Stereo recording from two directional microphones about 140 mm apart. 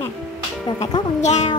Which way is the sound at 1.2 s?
55° left (ahead or behind).